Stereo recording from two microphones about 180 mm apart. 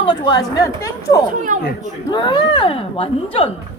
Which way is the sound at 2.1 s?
25° left (ahead or behind).